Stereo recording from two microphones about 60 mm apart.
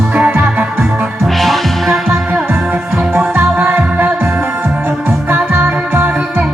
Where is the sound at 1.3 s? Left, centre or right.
Centre.